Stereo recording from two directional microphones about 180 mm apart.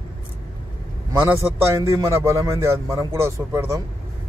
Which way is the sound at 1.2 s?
15° right (ahead or behind).